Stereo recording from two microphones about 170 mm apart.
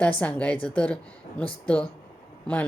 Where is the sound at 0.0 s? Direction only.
10° left (ahead or behind).